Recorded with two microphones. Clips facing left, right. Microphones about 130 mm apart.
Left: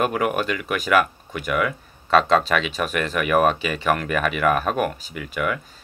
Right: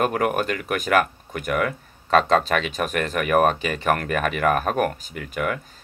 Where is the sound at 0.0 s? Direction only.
45° right (ahead or behind).